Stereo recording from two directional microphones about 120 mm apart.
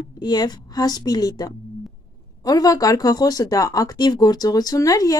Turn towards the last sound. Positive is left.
turn(degrees=30)  # may be behind; listen again after turning